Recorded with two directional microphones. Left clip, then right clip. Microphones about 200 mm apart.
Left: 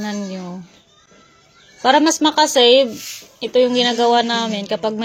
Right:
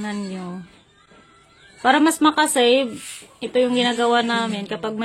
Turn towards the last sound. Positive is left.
turn(degrees=5)  # may be behind; listen again after turning